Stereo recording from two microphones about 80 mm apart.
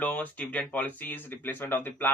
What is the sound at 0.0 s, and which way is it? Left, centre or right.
Speech, left.